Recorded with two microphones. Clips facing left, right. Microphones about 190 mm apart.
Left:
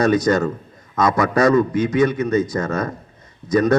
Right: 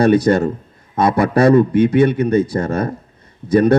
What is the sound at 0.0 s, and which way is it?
Speech, 30° right (ahead or behind).